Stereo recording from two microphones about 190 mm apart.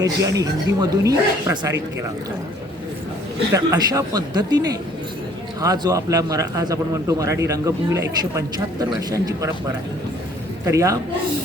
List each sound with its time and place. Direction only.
0.0 s speech: 20° right (ahead or behind)
3.5 s a man's voice: 15° right (ahead or behind)
10.7 s speech: 15° right (ahead or behind)